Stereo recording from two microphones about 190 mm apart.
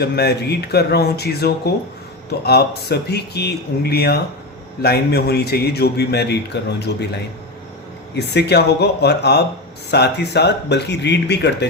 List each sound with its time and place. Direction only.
0.0 s a man's voice: 60° left (ahead or behind)